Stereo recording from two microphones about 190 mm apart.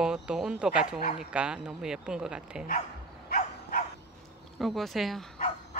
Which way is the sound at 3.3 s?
45° left (ahead or behind).